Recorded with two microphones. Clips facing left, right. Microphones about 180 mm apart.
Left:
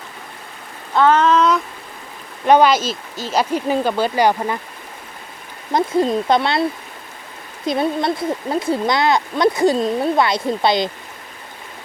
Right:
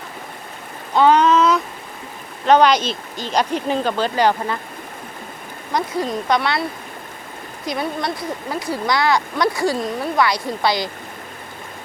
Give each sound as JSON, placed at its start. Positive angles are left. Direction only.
{"t": 1.2, "sound": "a sound", "side_deg": 0}
{"t": 2.5, "sound": "speech", "side_deg": 5}
{"t": 5.7, "sound": "speech", "side_deg": 25}
{"t": 7.7, "sound": "speech", "side_deg": 25}